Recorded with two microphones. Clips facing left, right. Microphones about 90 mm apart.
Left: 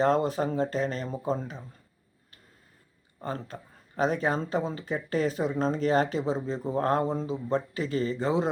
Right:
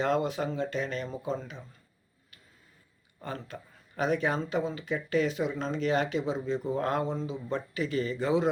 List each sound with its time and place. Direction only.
0.0 s speech: 35° left (ahead or behind)
3.2 s speech: 35° left (ahead or behind)